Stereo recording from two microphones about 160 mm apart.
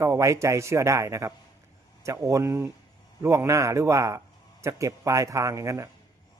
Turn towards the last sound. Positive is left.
turn(degrees=-20)  # may be behind; listen again after turning